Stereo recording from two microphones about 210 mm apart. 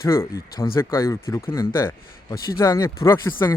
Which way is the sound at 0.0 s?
15° left (ahead or behind).